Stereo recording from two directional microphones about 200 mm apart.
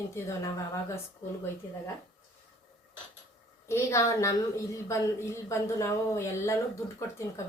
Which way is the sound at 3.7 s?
15° left (ahead or behind).